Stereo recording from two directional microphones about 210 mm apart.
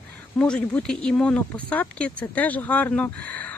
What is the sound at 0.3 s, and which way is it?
Speech, 5° left (ahead or behind).